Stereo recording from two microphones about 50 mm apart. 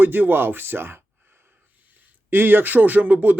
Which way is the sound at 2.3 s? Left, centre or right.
Right.